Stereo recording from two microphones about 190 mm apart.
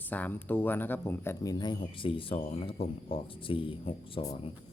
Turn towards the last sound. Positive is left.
turn(degrees=30)  # may be behind; listen again after turning